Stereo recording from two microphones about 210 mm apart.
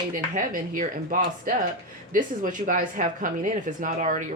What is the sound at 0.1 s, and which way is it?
Speech, 40° right (ahead or behind).